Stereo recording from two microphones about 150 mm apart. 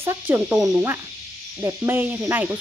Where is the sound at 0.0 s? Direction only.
15° right (ahead or behind).